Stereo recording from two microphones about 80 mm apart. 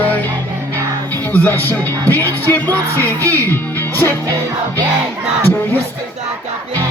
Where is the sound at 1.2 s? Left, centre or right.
Left.